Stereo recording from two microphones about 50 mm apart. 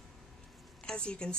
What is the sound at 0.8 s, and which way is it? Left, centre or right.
Speech, centre.